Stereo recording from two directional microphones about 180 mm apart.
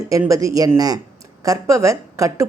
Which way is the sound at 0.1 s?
20° right (ahead or behind).